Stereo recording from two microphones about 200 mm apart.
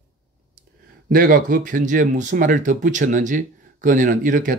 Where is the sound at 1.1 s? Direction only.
45° right (ahead or behind).